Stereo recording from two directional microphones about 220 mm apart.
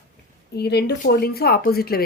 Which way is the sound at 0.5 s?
45° left (ahead or behind).